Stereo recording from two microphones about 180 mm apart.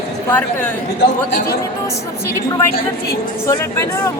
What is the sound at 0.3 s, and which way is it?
Speech, 10° left (ahead or behind).